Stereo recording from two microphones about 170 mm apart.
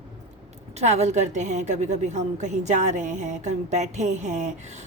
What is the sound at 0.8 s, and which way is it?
A woman's voice, 40° right (ahead or behind).